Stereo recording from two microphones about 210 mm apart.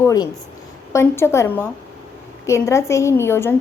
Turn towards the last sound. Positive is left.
turn(degrees=10)  # may be behind; listen again after turning